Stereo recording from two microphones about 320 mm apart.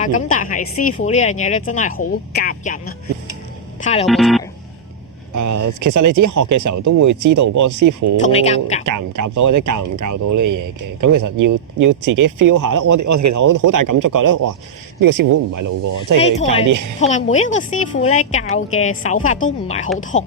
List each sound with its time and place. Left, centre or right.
0.0 s speech: left
4.0 s speech: centre
5.3 s speech: right
8.2 s speech: centre
8.9 s speech: right
16.4 s speech: centre
16.6 s speech: right
17.0 s speech: left